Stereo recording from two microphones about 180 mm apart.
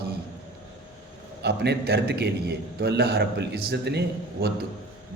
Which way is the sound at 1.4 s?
65° right (ahead or behind).